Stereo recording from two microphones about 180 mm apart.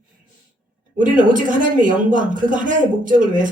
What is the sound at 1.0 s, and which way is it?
A woman's voice, 45° right (ahead or behind).